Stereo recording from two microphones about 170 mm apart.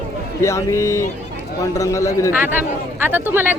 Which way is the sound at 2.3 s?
10° right (ahead or behind).